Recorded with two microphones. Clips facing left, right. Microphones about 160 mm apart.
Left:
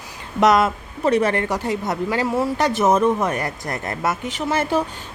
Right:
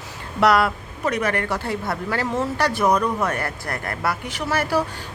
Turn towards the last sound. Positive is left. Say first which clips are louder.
# left 2 dB
turn(degrees=20)  # may be behind; listen again after turning